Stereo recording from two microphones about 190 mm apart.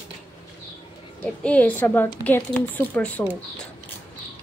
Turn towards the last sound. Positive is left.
turn(degrees=10)  # may be behind; listen again after turning